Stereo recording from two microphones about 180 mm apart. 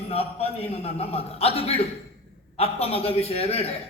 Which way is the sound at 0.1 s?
35° left (ahead or behind).